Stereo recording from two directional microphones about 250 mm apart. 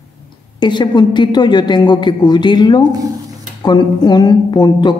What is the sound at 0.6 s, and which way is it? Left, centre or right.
A woman's voice, centre.